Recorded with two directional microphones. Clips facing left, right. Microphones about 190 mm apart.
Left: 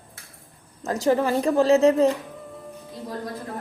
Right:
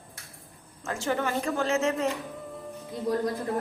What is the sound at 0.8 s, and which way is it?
A woman's voice, 35° left (ahead or behind).